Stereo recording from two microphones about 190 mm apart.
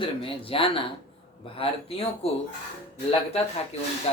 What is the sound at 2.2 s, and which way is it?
Speech, 30° left (ahead or behind).